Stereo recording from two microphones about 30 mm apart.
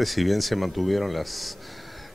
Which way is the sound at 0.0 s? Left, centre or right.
Centre.